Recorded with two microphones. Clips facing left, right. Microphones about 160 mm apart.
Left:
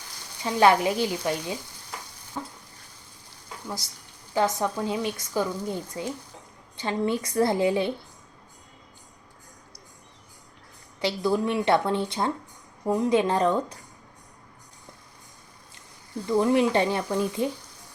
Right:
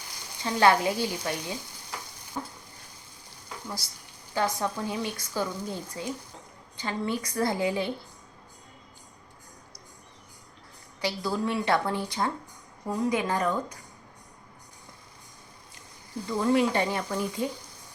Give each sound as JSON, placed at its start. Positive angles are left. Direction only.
{"t": 0.4, "sound": "speech", "side_deg": 15}
{"t": 4.4, "sound": "speech", "side_deg": 20}
{"t": 11.0, "sound": "speech", "side_deg": 20}
{"t": 16.3, "sound": "speech", "side_deg": 20}